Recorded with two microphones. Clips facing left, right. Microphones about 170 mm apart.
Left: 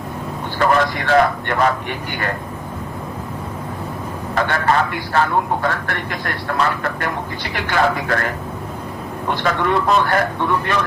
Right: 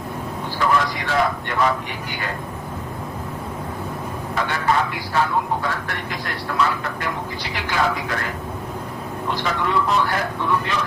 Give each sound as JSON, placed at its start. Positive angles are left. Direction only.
{"t": 0.6, "sound": "speech", "side_deg": 60}
{"t": 4.4, "sound": "speech", "side_deg": 55}
{"t": 9.3, "sound": "speech", "side_deg": 55}